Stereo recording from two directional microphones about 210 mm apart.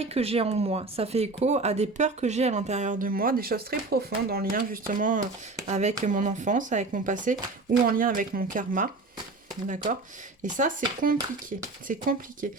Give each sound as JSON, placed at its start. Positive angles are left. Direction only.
{"t": 0.0, "sound": "speech", "side_deg": -30}
{"t": 10.4, "sound": "speech", "side_deg": -40}